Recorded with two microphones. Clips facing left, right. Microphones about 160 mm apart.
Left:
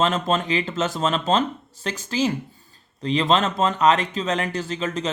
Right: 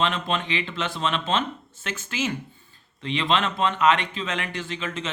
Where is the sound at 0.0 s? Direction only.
40° left (ahead or behind).